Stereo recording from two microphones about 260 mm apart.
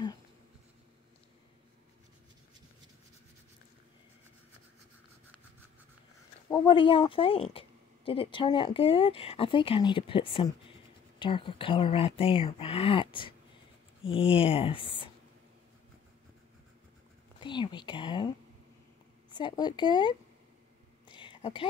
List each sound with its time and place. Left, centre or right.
6.5 s a woman's voice: centre
17.4 s speech: centre
19.3 s speech: centre
21.2 s whispering: centre